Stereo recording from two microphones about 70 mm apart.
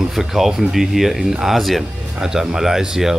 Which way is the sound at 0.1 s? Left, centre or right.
Centre.